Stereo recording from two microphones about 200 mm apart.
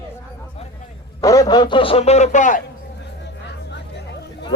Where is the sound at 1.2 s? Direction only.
15° left (ahead or behind); by 2.6 s 40° left (ahead or behind).